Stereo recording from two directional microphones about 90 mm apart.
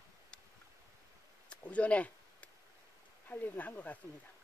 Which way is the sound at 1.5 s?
15° left (ahead or behind).